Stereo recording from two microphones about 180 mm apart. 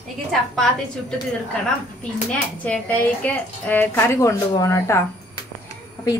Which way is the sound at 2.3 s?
10° left (ahead or behind).